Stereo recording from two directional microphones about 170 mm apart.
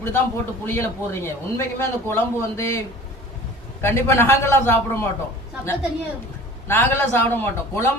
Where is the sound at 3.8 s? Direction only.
15° left (ahead or behind).